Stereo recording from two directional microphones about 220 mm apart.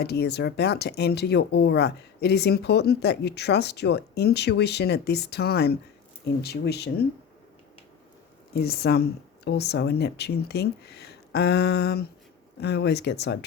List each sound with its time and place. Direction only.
0.0 s speech: 45° left (ahead or behind)
8.5 s speech: 45° left (ahead or behind)